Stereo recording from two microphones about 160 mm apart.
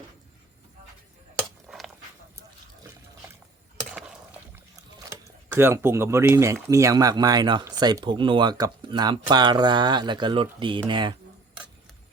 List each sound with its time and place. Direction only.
4.9 s speech: 20° right (ahead or behind)